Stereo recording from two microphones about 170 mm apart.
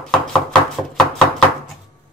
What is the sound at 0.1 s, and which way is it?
Chopping, 5° left (ahead or behind).